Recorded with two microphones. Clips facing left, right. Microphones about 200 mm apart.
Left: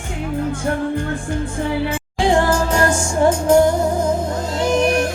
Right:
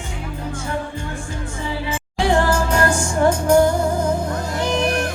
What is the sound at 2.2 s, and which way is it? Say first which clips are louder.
Music: left 2 dB; 20° left (ahead or behind).